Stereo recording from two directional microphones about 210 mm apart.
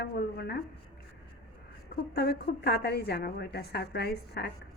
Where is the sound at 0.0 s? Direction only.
50° left (ahead or behind).